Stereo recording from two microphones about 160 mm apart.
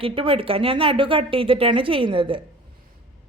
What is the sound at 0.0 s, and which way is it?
A woman's voice, 35° right (ahead or behind).